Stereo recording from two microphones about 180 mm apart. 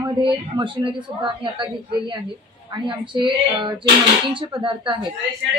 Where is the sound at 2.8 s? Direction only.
25° right (ahead or behind).